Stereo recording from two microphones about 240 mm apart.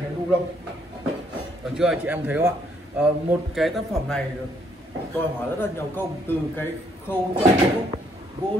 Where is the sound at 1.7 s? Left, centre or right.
Centre.